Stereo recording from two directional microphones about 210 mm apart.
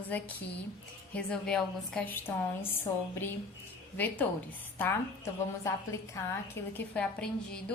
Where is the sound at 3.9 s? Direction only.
10° left (ahead or behind).